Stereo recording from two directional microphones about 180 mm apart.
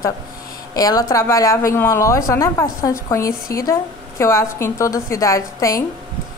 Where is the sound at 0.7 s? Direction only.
20° left (ahead or behind).